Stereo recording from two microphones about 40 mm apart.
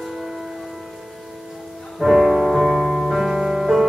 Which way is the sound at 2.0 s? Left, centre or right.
Centre.